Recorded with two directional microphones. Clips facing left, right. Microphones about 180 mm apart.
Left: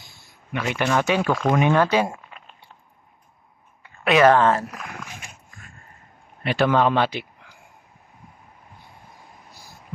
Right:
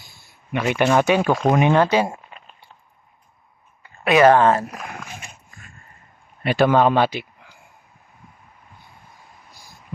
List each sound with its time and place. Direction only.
0.5 s speech: 15° right (ahead or behind)
4.0 s speech: 5° right (ahead or behind)
4.3 s speech: 20° right (ahead or behind)
6.4 s a man's voice: 5° right (ahead or behind)